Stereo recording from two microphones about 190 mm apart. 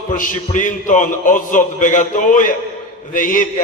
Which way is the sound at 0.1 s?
45° left (ahead or behind).